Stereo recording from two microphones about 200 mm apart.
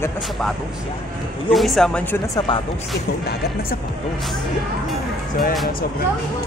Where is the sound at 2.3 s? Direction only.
20° left (ahead or behind).